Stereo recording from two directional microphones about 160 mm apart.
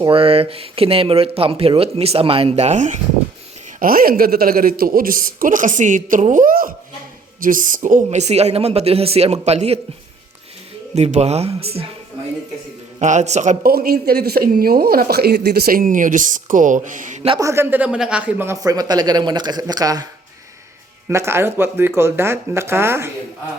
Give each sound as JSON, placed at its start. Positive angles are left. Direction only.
{"t": 0.0, "sound": "speech", "side_deg": -35}
{"t": 3.8, "sound": "speech", "side_deg": -65}
{"t": 10.9, "sound": "speech", "side_deg": -45}
{"t": 13.0, "sound": "speech", "side_deg": -50}
{"t": 17.4, "sound": "speech", "side_deg": -15}
{"t": 21.1, "sound": "speech", "side_deg": -15}